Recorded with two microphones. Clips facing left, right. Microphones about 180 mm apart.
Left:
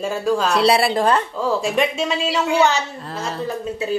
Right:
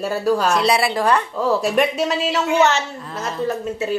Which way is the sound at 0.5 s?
30° left (ahead or behind).